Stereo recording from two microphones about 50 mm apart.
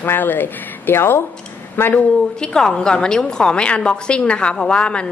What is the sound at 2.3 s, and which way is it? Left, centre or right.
A woman's voice, centre.